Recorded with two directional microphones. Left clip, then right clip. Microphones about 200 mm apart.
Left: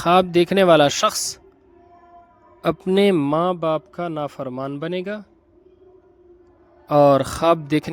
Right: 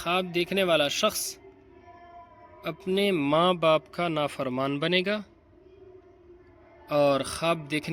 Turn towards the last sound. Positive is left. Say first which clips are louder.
# left 10 dB
turn(degrees=35)  # may be behind; listen again after turning